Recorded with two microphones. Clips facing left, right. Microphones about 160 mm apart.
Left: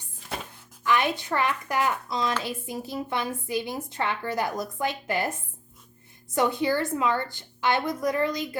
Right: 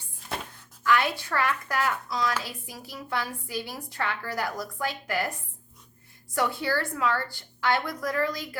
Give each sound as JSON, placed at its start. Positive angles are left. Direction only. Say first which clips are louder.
{"t": 0.9, "sound": "a woman's voice", "louder": "left 1 dB", "side_deg": 20}
{"t": 6.3, "sound": "a woman's voice", "louder": "left 3 dB", "side_deg": 20}